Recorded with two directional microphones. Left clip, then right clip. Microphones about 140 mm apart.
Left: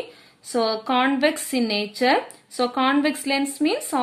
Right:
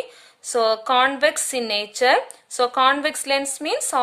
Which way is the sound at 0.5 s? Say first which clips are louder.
Right 3 dB; 35° right (ahead or behind).